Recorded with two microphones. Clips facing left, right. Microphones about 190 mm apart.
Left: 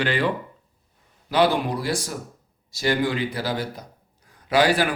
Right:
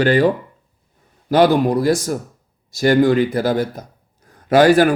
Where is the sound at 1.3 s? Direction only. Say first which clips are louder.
Right 7 dB; 45° right (ahead or behind).